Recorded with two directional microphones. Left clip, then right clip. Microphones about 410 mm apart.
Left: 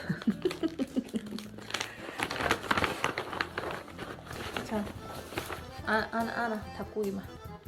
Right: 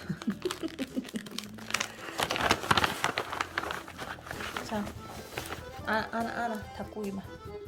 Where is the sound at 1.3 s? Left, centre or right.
Centre.